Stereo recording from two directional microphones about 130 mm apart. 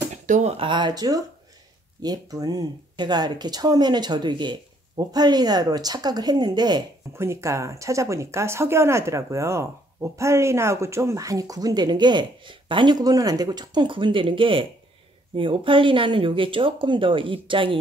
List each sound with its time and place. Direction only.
0.1 s speech: 60° right (ahead or behind)
0.7 s speech: 35° right (ahead or behind)
7.2 s speech: 20° right (ahead or behind); by 17.7 s 40° right (ahead or behind)